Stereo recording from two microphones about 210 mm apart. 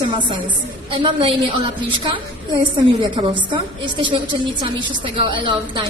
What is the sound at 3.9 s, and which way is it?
A woman's voice, 25° right (ahead or behind).